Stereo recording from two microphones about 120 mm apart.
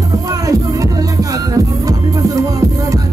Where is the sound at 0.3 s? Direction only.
30° right (ahead or behind).